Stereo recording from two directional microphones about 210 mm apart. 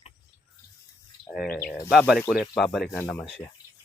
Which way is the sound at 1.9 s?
Centre (ahead or behind).